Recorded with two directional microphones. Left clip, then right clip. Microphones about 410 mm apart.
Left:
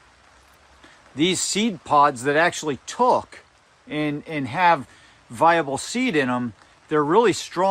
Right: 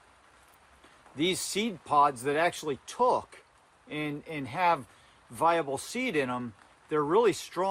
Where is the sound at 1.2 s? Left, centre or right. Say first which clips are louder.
Left 8 dB; left.